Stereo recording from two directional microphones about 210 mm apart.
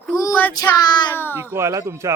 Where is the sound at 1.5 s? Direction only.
15° right (ahead or behind).